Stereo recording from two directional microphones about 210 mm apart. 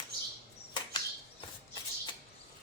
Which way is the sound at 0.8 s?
20° left (ahead or behind).